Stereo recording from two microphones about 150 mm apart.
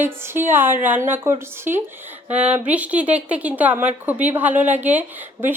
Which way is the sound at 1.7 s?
60° right (ahead or behind).